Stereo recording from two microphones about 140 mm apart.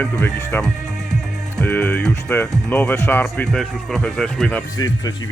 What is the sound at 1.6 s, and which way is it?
Speech, 15° left (ahead or behind).